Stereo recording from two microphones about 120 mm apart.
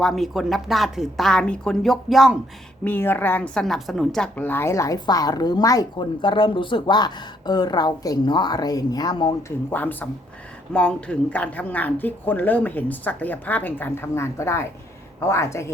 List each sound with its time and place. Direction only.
0.0 s speech: centre (ahead or behind)
2.8 s speech: 15° left (ahead or behind); by 4.3 s centre (ahead or behind)
4.4 s a woman's voice: 15° left (ahead or behind); by 9.3 s 35° left (ahead or behind)
9.6 s a woman's voice: 15° left (ahead or behind)